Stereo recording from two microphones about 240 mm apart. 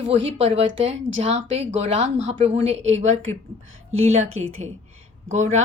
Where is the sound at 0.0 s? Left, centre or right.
Right.